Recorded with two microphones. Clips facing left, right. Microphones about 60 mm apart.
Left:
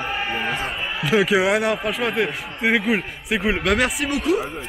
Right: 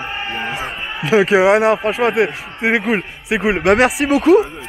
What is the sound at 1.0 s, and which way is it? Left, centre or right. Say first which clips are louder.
Speech: right 6 dB; centre.